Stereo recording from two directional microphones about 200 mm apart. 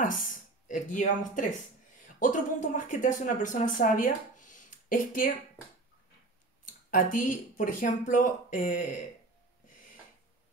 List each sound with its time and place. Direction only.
0.0 s speech: 45° left (ahead or behind)
6.6 s speech: 45° left (ahead or behind)